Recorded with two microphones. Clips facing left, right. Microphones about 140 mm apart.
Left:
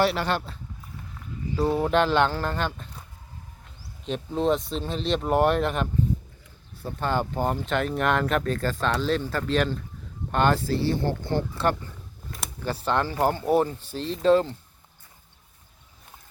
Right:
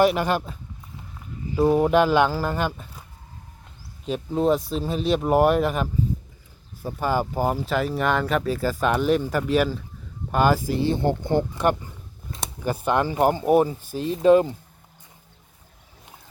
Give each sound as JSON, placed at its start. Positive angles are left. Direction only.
{"t": 0.0, "sound": "speech", "side_deg": -15}
{"t": 4.0, "sound": "speech", "side_deg": -5}